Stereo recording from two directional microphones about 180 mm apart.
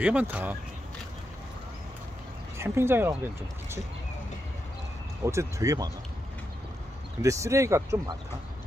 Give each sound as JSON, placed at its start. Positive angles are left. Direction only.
{"t": 0.0, "sound": "speech", "side_deg": -10}
{"t": 2.5, "sound": "speech", "side_deg": -15}
{"t": 5.2, "sound": "speech", "side_deg": -15}
{"t": 7.2, "sound": "speech", "side_deg": -15}